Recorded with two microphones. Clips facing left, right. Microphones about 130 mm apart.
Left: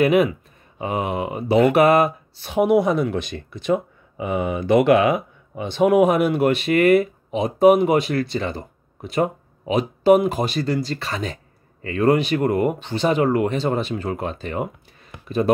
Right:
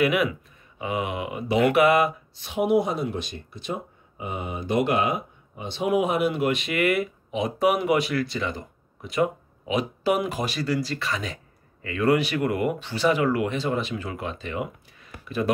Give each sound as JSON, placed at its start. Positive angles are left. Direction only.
{"t": 0.0, "sound": "speech", "side_deg": 30}
{"t": 7.9, "sound": "speech", "side_deg": 30}
{"t": 8.4, "sound": "a sound", "side_deg": 30}
{"t": 9.1, "sound": "speech", "side_deg": 45}
{"t": 10.5, "sound": "speech", "side_deg": 25}
{"t": 12.2, "sound": "speech", "side_deg": 25}
{"t": 12.4, "sound": "speech", "side_deg": 40}
{"t": 12.7, "sound": "speech", "side_deg": 25}
{"t": 14.0, "sound": "speech", "side_deg": 45}